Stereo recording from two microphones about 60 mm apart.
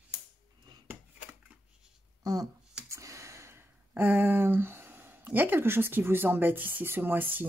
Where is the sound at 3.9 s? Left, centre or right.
Right.